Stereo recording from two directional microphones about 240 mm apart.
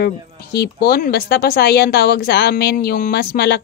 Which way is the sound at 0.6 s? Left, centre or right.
Left.